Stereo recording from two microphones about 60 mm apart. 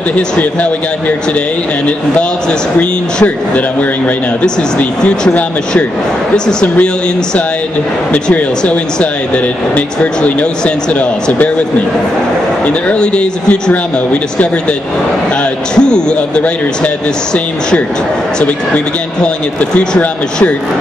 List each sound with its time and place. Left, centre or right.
0.1 s speech: left
2.8 s speech: left
8.3 s speech: left
12.6 s speech: left
15.7 s speech: centre
19.2 s speech: centre